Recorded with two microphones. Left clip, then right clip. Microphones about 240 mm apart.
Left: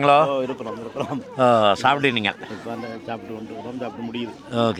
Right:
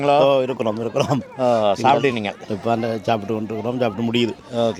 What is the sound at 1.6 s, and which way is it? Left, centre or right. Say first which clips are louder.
Speech: right 2 dB; centre.